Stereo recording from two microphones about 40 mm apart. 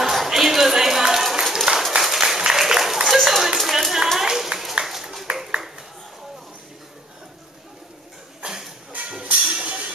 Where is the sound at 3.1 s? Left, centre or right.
Centre.